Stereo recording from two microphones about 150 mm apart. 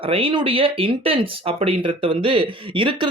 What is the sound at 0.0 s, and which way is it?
Speech, 35° right (ahead or behind).